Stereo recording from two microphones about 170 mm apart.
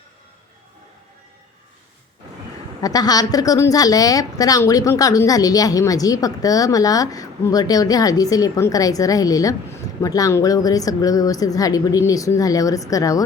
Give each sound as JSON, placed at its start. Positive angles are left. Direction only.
{"t": 2.8, "sound": "a woman's voice", "side_deg": 20}